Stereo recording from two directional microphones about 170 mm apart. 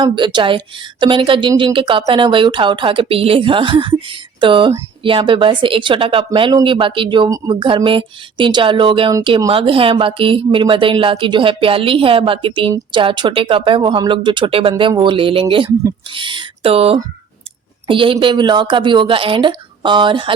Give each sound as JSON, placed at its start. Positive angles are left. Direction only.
{"t": 0.0, "sound": "a woman's voice", "side_deg": -25}